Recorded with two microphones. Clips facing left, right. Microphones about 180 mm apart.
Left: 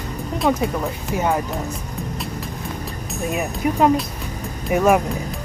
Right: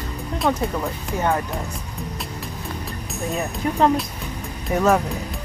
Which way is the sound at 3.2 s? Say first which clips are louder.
Left 2 dB; 15° left (ahead or behind).